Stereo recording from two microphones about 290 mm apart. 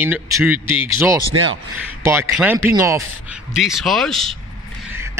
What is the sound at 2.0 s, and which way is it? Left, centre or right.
Speech, centre.